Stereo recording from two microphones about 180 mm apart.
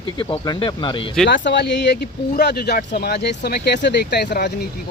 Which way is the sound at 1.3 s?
75° left (ahead or behind).